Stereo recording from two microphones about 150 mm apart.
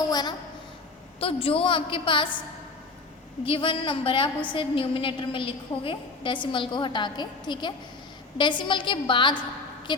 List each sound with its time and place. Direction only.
0.1 s a child's voice: 30° left (ahead or behind)
3.4 s a woman's voice: 35° left (ahead or behind)